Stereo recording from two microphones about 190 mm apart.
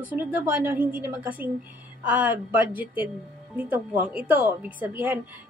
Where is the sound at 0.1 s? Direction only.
10° right (ahead or behind).